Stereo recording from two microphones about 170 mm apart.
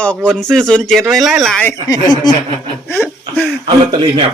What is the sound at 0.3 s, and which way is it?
Speech, 5° left (ahead or behind).